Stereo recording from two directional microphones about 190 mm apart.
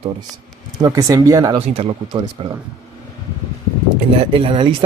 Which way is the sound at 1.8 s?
30° right (ahead or behind).